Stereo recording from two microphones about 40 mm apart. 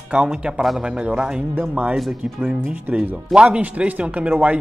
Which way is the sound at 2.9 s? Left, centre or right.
Right.